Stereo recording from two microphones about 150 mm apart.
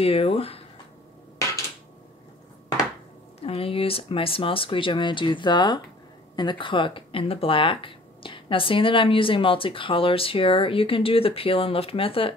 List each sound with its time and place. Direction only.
0.0 s speech: 40° left (ahead or behind)
3.3 s speech: 40° left (ahead or behind)